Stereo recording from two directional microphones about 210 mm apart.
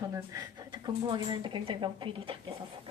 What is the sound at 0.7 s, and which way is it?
A woman's voice, 25° right (ahead or behind).